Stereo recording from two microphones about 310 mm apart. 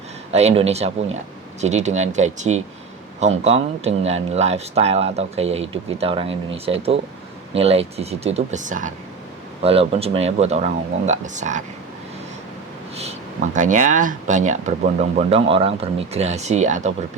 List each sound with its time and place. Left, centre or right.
0.3 s speech: right
7.5 s speech: centre
13.0 s speech: right